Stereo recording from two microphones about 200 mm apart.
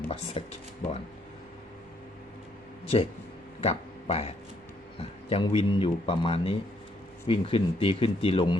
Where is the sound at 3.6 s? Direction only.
30° left (ahead or behind).